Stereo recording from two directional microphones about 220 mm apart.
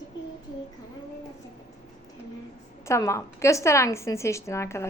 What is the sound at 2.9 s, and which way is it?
A woman's voice, 10° left (ahead or behind).